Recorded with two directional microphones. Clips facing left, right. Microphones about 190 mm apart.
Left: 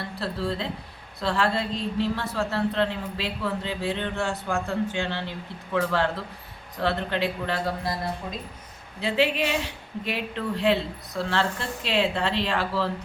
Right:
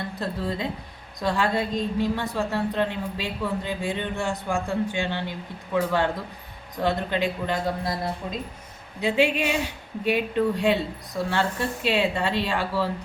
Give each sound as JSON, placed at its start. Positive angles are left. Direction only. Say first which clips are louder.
{"t": 0.2, "sound": "a woman's voice", "louder": "even", "side_deg": -15}
{"t": 9.0, "sound": "a woman's voice", "louder": "right 2 dB", "side_deg": -10}